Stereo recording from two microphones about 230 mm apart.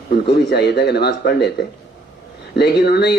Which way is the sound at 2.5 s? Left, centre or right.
Left.